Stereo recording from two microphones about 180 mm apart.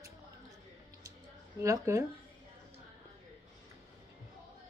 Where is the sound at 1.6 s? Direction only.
15° right (ahead or behind).